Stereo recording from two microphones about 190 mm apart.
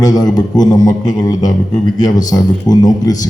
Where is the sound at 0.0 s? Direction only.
20° left (ahead or behind).